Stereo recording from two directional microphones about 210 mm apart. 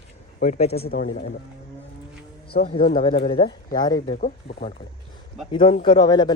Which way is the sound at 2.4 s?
45° left (ahead or behind).